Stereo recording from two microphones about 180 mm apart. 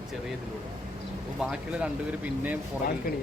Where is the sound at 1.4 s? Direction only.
5° right (ahead or behind).